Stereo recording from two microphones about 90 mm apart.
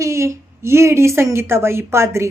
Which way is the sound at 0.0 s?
30° right (ahead or behind).